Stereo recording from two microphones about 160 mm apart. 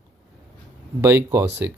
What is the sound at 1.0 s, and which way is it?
Speech, 15° right (ahead or behind).